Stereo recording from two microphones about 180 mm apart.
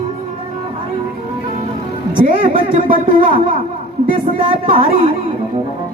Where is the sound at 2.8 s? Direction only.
50° right (ahead or behind).